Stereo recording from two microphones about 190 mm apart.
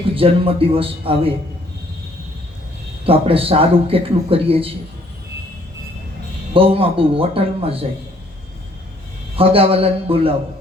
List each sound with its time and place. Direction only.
0.1 s a man's voice: 30° right (ahead or behind)
3.1 s a man's voice: 30° right (ahead or behind)
6.5 s a man's voice: 30° right (ahead or behind)
9.3 s a man's voice: 30° right (ahead or behind)